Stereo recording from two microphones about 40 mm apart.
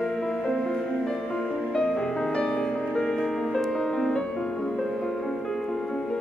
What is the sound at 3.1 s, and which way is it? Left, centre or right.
Music, centre.